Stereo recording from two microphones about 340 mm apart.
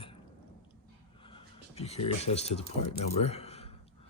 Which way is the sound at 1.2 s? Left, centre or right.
Centre.